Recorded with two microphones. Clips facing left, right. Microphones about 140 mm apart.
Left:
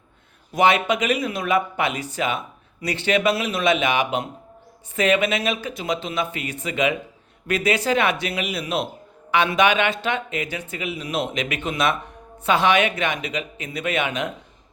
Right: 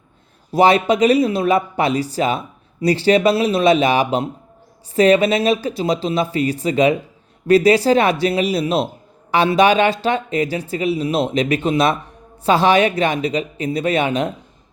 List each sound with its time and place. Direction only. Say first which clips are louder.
0.5 s speech: right 5 dB; 35° right (ahead or behind)